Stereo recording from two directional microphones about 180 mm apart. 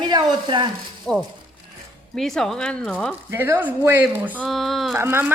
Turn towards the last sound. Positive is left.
turn(degrees=-15)  # may be behind; listen again after turning